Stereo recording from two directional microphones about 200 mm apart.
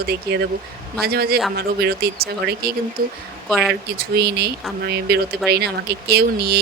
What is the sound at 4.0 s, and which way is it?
Speech, 55° right (ahead or behind).